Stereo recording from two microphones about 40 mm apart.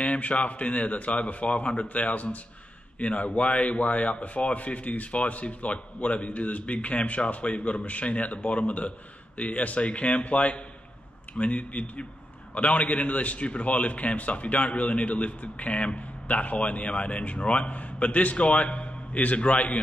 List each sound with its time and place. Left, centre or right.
0.0 s a man's voice: left